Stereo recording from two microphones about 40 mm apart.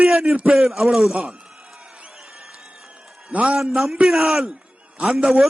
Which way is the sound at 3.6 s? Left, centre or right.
Centre.